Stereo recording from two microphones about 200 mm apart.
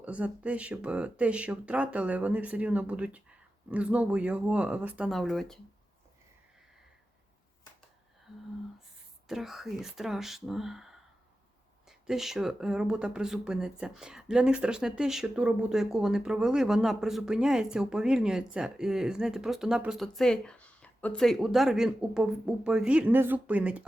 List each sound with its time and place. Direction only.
0.0 s speech: 5° right (ahead or behind)
9.2 s speech: centre (ahead or behind)